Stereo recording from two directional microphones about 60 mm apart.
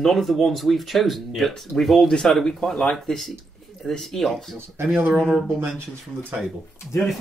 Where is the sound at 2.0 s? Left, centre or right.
Centre.